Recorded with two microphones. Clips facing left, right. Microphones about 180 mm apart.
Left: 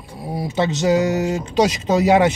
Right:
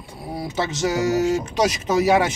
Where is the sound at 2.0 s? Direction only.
20° left (ahead or behind).